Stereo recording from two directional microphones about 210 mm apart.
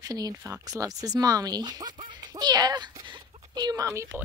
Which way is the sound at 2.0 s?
20° right (ahead or behind).